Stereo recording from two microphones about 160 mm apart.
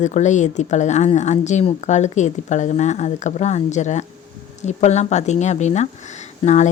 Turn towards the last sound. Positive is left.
turn(degrees=45)  # may be behind; listen again after turning